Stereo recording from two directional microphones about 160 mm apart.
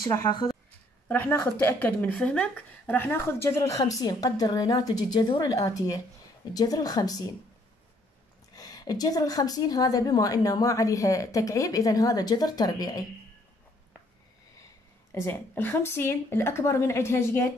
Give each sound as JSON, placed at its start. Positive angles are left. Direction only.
{"t": 0.1, "sound": "a woman's voice", "side_deg": 25}
{"t": 1.0, "sound": "a woman's voice", "side_deg": 10}
{"t": 8.5, "sound": "a woman's voice", "side_deg": 20}
{"t": 15.1, "sound": "speech", "side_deg": 15}